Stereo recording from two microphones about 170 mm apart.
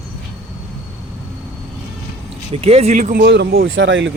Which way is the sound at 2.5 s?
35° right (ahead or behind).